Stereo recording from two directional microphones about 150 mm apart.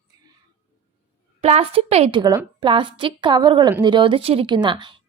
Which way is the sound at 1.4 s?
45° right (ahead or behind).